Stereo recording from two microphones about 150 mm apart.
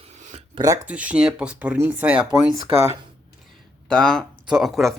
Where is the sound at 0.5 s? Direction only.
25° right (ahead or behind).